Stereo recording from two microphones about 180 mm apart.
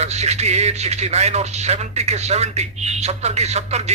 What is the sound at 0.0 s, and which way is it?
Speech, 35° right (ahead or behind).